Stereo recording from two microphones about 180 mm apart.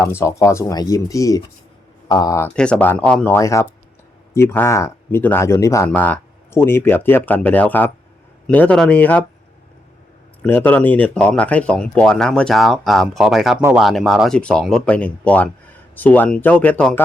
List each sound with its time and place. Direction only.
0.2 s speech: 15° left (ahead or behind)
2.6 s speech: 5° left (ahead or behind)
10.4 s speech: 10° left (ahead or behind)